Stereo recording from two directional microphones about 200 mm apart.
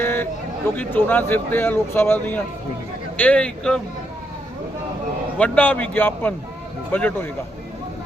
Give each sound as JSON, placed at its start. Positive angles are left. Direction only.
{"t": 0.0, "sound": "a sound", "side_deg": 10}
{"t": 0.8, "sound": "a man's voice", "side_deg": 10}
{"t": 5.4, "sound": "speech", "side_deg": 10}